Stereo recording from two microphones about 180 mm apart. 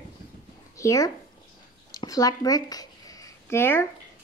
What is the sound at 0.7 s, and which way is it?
Speech, 15° left (ahead or behind).